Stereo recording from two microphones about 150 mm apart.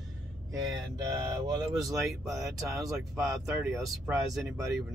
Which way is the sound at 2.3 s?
Centre (ahead or behind).